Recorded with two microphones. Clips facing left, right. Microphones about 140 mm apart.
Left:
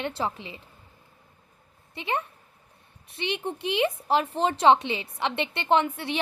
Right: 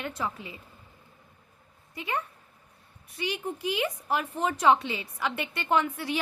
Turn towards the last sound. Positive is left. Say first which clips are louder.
# left 3 dB
turn(degrees=25)  # may be behind; listen again after turning